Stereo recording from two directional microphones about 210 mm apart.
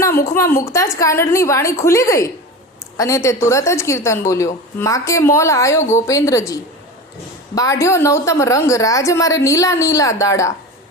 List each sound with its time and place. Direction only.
0.3 s a woman's voice: 15° left (ahead or behind)